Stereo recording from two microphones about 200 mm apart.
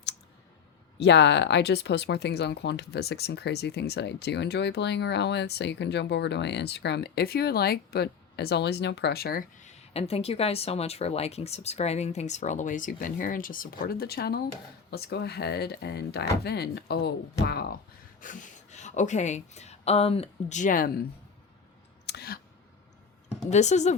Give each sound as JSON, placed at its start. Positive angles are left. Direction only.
{"t": 0.9, "sound": "speech", "side_deg": 60}
{"t": 18.2, "sound": "speech", "side_deg": 40}
{"t": 22.0, "sound": "clicking", "side_deg": 55}
{"t": 23.5, "sound": "speech", "side_deg": 35}